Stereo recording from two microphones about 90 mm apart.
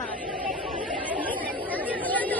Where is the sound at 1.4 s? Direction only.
15° right (ahead or behind).